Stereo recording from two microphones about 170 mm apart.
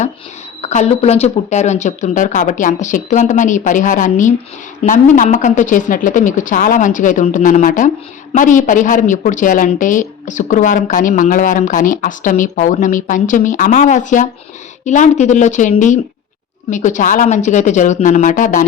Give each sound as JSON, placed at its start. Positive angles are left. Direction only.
{"t": 0.6, "sound": "a woman's voice", "side_deg": 40}